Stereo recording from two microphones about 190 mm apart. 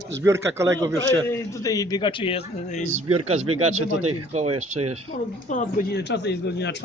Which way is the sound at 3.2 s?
35° right (ahead or behind).